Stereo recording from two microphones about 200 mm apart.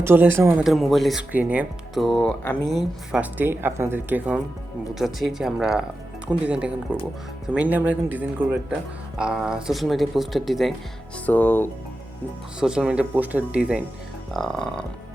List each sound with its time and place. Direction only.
0.0 s speech: 10° right (ahead or behind)
0.6 s speech: centre (ahead or behind)
12.5 s speech: 5° right (ahead or behind)